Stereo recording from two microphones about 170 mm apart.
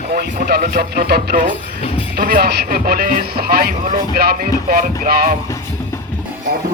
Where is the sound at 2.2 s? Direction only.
60° right (ahead or behind).